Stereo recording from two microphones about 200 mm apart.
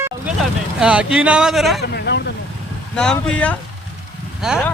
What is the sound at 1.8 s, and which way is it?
Speech, 55° left (ahead or behind).